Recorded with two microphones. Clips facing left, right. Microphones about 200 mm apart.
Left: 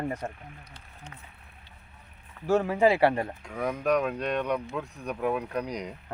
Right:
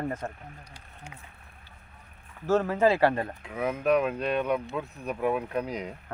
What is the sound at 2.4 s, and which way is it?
Speech, 15° left (ahead or behind).